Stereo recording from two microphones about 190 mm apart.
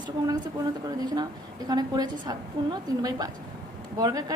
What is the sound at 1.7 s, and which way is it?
A woman's voice, 20° right (ahead or behind).